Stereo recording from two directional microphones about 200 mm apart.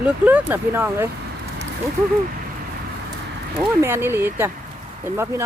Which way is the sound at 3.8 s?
10° right (ahead or behind).